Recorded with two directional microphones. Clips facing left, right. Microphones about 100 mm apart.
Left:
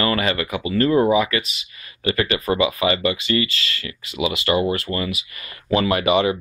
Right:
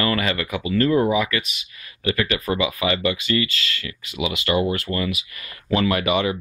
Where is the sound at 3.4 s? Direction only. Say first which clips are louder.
Left 1 dB; 35° left (ahead or behind).